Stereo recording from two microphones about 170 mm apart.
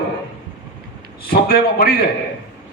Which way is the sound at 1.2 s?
65° left (ahead or behind).